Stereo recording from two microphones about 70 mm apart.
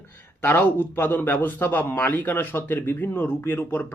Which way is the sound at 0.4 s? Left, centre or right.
Left.